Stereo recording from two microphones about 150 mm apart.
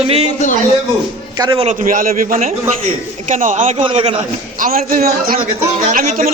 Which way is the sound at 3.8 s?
35° right (ahead or behind).